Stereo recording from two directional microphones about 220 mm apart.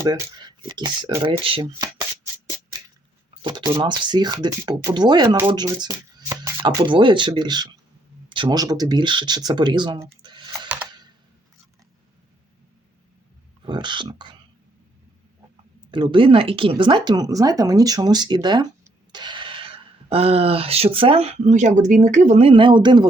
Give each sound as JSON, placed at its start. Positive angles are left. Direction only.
{"t": 0.0, "sound": "speech", "side_deg": -20}
{"t": 3.4, "sound": "speech", "side_deg": -20}
{"t": 13.7, "sound": "speech", "side_deg": -20}
{"t": 15.9, "sound": "speech", "side_deg": -20}